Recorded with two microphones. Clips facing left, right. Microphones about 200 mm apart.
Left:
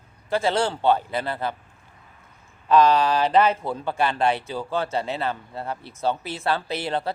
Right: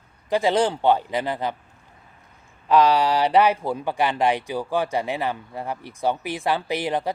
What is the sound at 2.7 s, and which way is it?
Speech, 15° right (ahead or behind).